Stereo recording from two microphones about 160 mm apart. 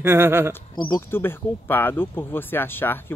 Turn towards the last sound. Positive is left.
turn(degrees=15)  # may be behind; listen again after turning